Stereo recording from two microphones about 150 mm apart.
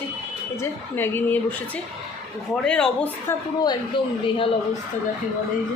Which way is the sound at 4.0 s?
35° left (ahead or behind).